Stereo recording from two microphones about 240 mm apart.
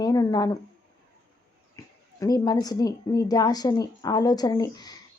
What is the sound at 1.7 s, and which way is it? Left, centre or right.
Speech, centre.